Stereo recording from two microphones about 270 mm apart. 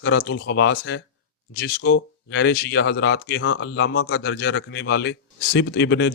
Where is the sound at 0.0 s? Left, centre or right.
Left.